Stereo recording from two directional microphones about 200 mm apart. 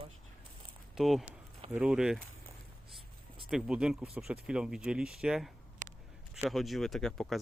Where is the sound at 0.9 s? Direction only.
Centre (ahead or behind).